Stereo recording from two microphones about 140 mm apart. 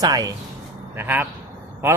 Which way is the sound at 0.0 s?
25° right (ahead or behind).